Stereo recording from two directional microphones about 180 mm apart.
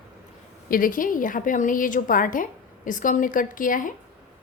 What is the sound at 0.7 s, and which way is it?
A woman's voice, 50° left (ahead or behind).